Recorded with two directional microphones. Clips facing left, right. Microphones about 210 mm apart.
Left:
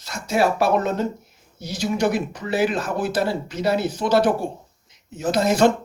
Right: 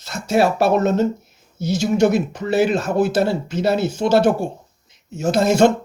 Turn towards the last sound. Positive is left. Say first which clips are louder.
# right 3 dB
turn(degrees=-25)  # may be behind; listen again after turning